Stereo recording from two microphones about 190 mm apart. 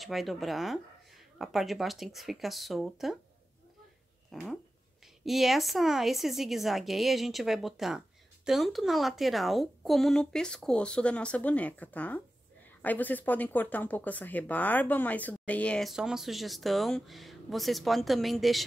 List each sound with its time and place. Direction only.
0.0 s speech: centre (ahead or behind)
4.3 s a sound: centre (ahead or behind)
5.2 s speech: centre (ahead or behind)